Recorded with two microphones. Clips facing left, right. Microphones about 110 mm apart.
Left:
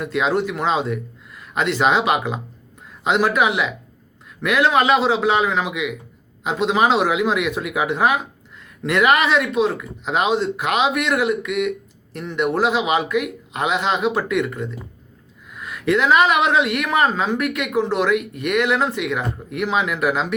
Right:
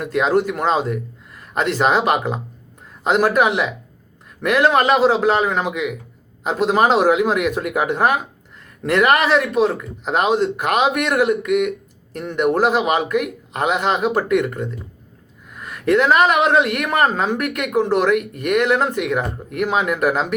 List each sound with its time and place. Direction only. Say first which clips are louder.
0.0 s speech: right 3 dB; 45° right (ahead or behind)